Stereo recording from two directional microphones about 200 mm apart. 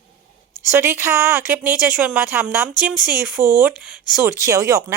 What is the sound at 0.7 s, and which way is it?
Speech, 10° right (ahead or behind).